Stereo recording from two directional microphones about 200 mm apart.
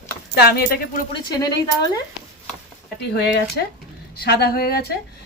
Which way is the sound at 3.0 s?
55° left (ahead or behind).